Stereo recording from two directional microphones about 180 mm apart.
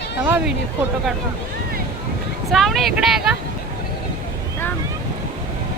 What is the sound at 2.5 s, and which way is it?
Speech, centre (ahead or behind).